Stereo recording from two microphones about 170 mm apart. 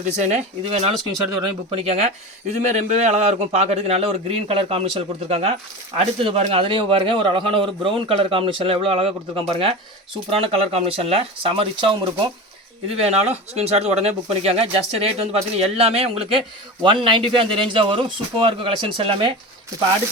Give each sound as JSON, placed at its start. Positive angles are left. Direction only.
{"t": 0.2, "sound": "speech", "side_deg": -40}
{"t": 13.0, "sound": "speech", "side_deg": -40}